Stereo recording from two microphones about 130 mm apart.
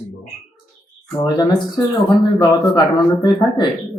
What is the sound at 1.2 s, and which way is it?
Speech, 30° left (ahead or behind).